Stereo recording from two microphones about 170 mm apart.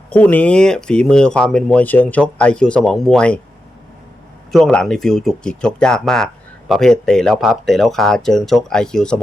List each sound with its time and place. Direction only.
0.1 s speech: 10° left (ahead or behind)
4.5 s speech: 5° left (ahead or behind)